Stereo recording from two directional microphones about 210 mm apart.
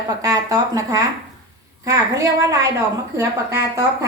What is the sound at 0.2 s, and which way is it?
Speech, 15° right (ahead or behind).